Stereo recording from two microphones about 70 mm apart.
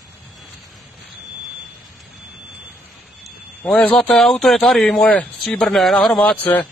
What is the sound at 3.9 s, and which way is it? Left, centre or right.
Speech, centre.